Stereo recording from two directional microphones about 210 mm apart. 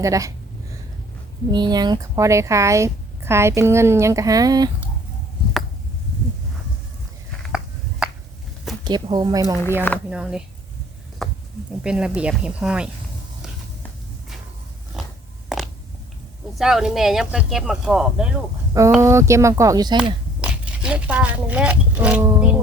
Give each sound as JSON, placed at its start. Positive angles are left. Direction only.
{"t": 0.0, "sound": "speech", "side_deg": -15}
{"t": 1.5, "sound": "speech", "side_deg": -20}
{"t": 7.4, "sound": "a sound", "side_deg": -5}
{"t": 8.8, "sound": "speech", "side_deg": -20}
{"t": 10.1, "sound": "speech", "side_deg": -5}
{"t": 11.2, "sound": "a sound", "side_deg": 0}
{"t": 11.8, "sound": "speech", "side_deg": -5}
{"t": 15.0, "sound": "a sound", "side_deg": -5}
{"t": 16.6, "sound": "speech", "side_deg": 0}
{"t": 20.4, "sound": "speech", "side_deg": -5}